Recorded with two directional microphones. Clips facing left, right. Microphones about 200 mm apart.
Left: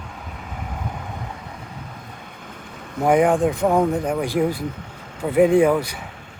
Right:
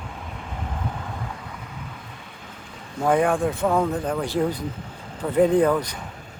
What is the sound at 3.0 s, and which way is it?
Speech, 15° left (ahead or behind).